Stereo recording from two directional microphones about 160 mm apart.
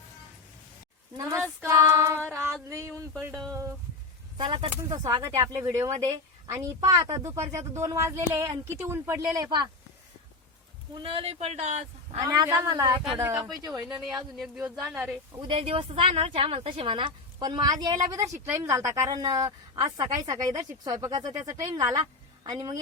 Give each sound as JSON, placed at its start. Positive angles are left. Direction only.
{"t": 1.1, "sound": "a sound", "side_deg": -20}
{"t": 4.4, "sound": "speech", "side_deg": -35}
{"t": 5.0, "sound": "a woman's voice", "side_deg": -20}
{"t": 10.9, "sound": "a man's voice", "side_deg": -35}
{"t": 12.2, "sound": "a woman's voice", "side_deg": -20}
{"t": 14.1, "sound": "speech", "side_deg": 0}
{"t": 15.4, "sound": "a woman's voice", "side_deg": -35}